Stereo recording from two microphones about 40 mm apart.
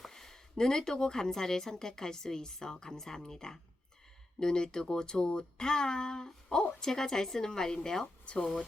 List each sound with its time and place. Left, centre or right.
0.1 s speech: centre
8.0 s speech: left